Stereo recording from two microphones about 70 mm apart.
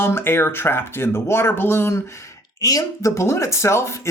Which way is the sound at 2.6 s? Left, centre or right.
Left.